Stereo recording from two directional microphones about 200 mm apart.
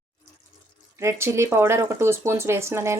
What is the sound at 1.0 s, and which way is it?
Speech, 15° right (ahead or behind).